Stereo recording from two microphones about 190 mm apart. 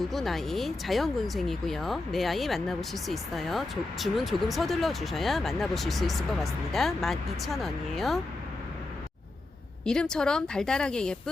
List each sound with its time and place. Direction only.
0.0 s speech: centre (ahead or behind)
9.8 s speech: 5° left (ahead or behind)